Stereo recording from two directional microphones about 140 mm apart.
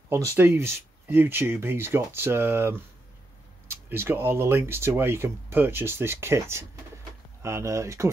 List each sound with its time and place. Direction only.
0.1 s speech: 20° right (ahead or behind)